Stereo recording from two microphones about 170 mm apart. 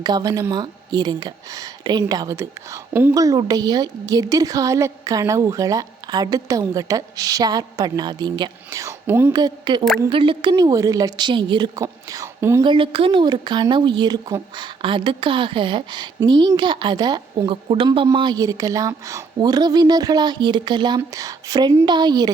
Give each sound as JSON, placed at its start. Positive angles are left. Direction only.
{"t": 0.0, "sound": "speech", "side_deg": -20}
{"t": 3.2, "sound": "speech", "side_deg": -20}
{"t": 9.3, "sound": "speech", "side_deg": -25}
{"t": 10.5, "sound": "speech", "side_deg": -20}
{"t": 12.6, "sound": "speech", "side_deg": -30}